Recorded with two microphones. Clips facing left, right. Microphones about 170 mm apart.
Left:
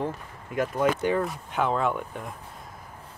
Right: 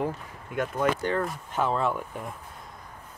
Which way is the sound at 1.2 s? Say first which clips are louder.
Left 1 dB; centre (ahead or behind).